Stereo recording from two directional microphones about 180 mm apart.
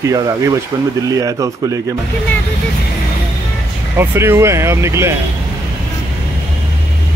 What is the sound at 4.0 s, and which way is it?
Speech, 15° right (ahead or behind).